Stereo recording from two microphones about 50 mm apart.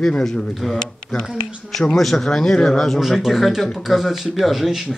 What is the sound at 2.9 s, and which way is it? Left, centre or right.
Speech, centre.